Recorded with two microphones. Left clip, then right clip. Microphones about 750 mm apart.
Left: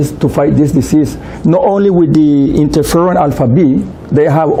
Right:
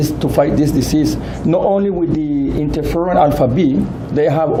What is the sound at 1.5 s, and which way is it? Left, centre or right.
A man's voice, left.